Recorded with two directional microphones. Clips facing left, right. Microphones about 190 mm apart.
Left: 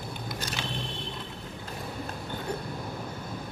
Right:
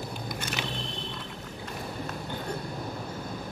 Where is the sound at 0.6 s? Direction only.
15° right (ahead or behind).